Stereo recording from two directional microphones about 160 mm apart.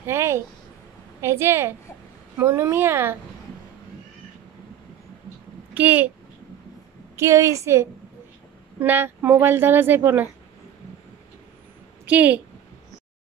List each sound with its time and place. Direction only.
0.0 s speech: 15° right (ahead or behind)
5.8 s speech: 10° right (ahead or behind)
7.2 s speech: 15° right (ahead or behind)
12.1 s speech: 10° right (ahead or behind)